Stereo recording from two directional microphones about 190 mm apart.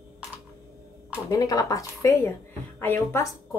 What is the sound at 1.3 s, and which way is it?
Speech, 20° left (ahead or behind).